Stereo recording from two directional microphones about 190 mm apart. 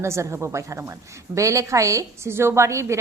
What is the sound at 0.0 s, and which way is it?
A woman's voice, 15° right (ahead or behind).